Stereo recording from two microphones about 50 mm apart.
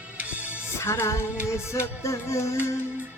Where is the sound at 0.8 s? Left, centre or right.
Left.